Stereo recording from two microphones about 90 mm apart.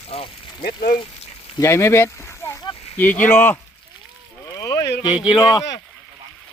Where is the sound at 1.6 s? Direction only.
30° left (ahead or behind).